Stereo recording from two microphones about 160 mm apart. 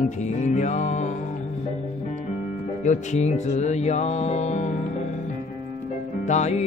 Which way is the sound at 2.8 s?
50° left (ahead or behind).